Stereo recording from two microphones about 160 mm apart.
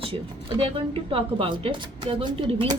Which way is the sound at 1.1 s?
35° right (ahead or behind).